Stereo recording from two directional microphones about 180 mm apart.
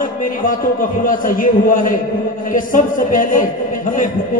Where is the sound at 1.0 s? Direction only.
50° left (ahead or behind).